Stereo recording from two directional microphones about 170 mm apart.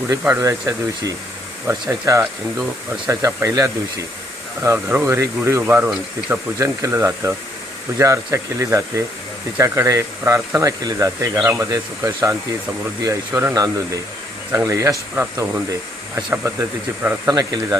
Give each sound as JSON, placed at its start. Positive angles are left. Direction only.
{"t": 0.1, "sound": "speech", "side_deg": -15}
{"t": 6.6, "sound": "speech", "side_deg": -15}